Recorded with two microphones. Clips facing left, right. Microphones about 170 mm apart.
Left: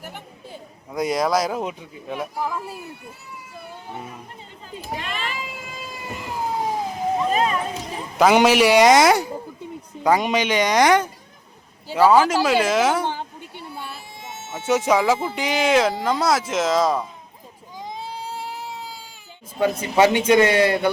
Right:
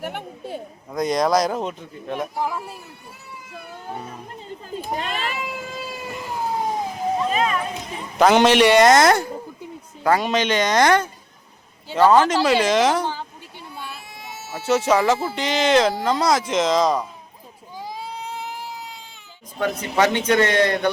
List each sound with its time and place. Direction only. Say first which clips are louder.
0.0 s a man's voice: right 7 dB; 65° right (ahead or behind)
0.9 s speech: right 2 dB; 5° left (ahead or behind)
4.9 s speech: right 1 dB; 40° right (ahead or behind)
7.3 s speech: left 2 dB; 35° left (ahead or behind)
8.2 s a man's voice: right 1 dB; 10° left (ahead or behind)
14.2 s a sound: even; 25° left (ahead or behind)
14.7 s a man's voice: even; 10° left (ahead or behind)
17.7 s baby cry: even; 5° right (ahead or behind)
18.2 s baby cry: even; 30° left (ahead or behind)
19.5 s a man's voice: left 3 dB; 10° left (ahead or behind)